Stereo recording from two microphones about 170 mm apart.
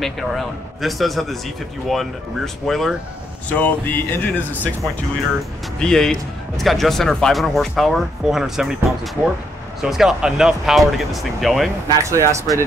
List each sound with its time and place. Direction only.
0.0 s speech: centre (ahead or behind)
5.8 s speech: 5° left (ahead or behind)
12.0 s speech: 15° right (ahead or behind)